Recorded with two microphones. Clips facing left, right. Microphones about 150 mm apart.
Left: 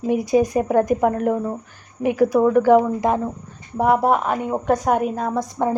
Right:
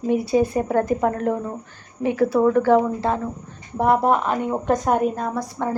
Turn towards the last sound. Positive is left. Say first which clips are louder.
# left 3 dB
turn(degrees=15)  # may be behind; listen again after turning